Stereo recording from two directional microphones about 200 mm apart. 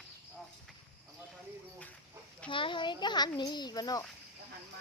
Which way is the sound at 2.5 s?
25° left (ahead or behind).